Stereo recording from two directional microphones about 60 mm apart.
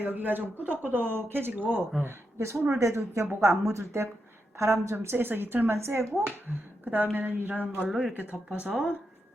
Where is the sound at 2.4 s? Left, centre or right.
Right.